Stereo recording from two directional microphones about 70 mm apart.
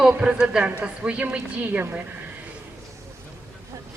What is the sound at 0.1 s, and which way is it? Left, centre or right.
A woman's voice, centre.